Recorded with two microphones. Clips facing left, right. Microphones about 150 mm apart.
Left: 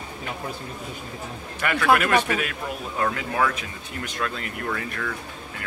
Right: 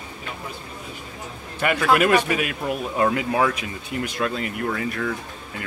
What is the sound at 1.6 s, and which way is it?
Speech, 20° right (ahead or behind).